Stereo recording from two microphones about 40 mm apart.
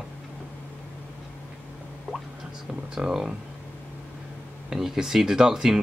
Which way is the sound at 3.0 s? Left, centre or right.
Centre.